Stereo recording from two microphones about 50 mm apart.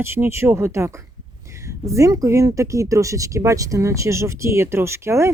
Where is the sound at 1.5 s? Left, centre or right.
Right.